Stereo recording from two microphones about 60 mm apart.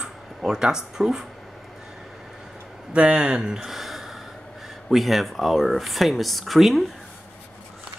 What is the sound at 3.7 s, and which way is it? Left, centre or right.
Gasp, centre.